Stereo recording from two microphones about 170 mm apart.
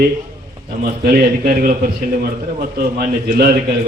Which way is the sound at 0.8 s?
60° right (ahead or behind).